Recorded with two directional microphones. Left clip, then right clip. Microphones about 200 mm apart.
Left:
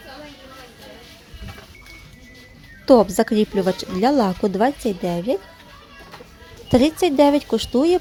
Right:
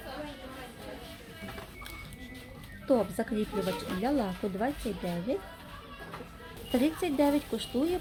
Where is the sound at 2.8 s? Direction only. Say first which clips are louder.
Left 14 dB; 45° left (ahead or behind).